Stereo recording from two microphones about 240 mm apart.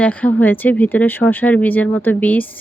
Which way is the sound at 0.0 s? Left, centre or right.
Centre.